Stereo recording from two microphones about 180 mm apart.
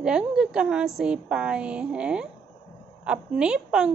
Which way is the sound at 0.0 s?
5° right (ahead or behind).